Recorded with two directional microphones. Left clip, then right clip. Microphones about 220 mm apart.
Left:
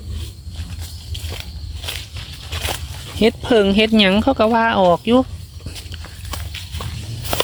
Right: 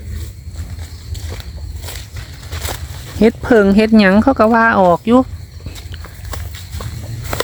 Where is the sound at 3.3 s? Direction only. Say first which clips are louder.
Right 4 dB; 20° right (ahead or behind).